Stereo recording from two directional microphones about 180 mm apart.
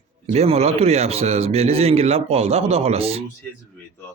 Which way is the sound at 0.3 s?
35° right (ahead or behind).